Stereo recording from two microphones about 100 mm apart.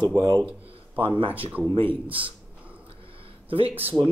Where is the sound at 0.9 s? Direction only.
65° right (ahead or behind).